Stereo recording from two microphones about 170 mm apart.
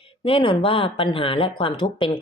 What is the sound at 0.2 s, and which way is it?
Speech, 30° left (ahead or behind).